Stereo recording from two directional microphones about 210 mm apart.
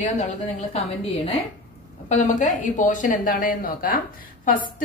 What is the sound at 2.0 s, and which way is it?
Speech, 35° left (ahead or behind).